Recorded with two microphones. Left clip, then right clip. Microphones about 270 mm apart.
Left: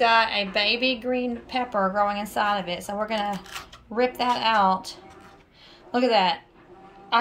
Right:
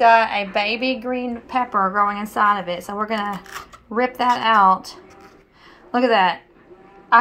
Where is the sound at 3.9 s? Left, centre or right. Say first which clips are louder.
Right 4 dB; right.